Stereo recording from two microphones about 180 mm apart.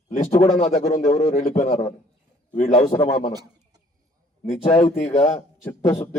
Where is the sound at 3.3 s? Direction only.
20° right (ahead or behind).